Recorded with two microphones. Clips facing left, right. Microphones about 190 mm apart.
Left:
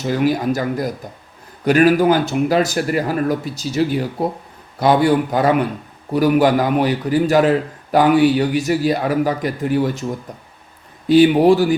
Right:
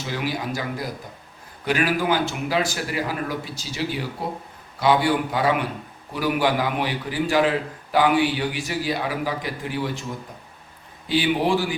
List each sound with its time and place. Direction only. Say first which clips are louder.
0.0 s a man's voice: left 10 dB; 45° left (ahead or behind)
11.1 s a man's voice: left 10 dB; 45° left (ahead or behind)